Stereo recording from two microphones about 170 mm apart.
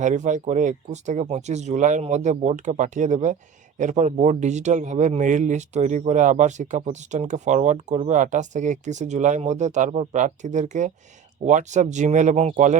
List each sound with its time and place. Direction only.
0.0 s speech: 45° right (ahead or behind)